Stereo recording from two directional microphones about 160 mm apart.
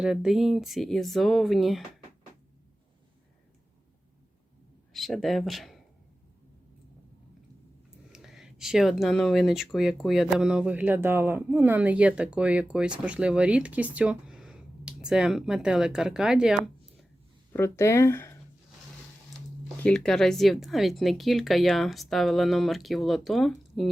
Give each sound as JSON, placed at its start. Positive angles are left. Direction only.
{"t": 0.0, "sound": "speech", "side_deg": -5}
{"t": 4.9, "sound": "speech", "side_deg": 0}
{"t": 8.1, "sound": "speech", "side_deg": 0}
{"t": 17.5, "sound": "speech", "side_deg": 15}
{"t": 19.8, "sound": "speech", "side_deg": 5}